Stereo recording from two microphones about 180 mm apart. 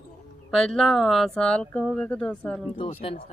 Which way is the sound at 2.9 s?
30° left (ahead or behind).